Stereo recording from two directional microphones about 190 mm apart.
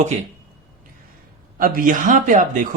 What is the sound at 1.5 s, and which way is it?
Speech, 45° right (ahead or behind).